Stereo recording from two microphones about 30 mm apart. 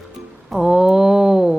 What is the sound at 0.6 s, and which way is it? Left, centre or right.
Speech, centre.